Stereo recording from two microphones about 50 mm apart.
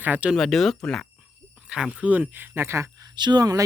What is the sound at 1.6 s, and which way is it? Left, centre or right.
Speech, centre.